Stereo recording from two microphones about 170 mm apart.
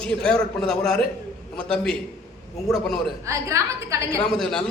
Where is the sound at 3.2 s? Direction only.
15° right (ahead or behind).